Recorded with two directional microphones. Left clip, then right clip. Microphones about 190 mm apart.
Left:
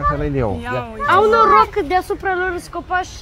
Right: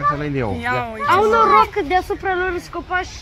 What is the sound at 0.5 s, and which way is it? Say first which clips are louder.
Speech: right 2 dB; 5° right (ahead or behind).